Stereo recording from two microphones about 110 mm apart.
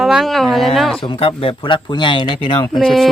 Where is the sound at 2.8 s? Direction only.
Centre (ahead or behind).